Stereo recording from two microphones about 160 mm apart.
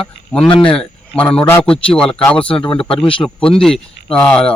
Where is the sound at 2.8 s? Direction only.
35° left (ahead or behind).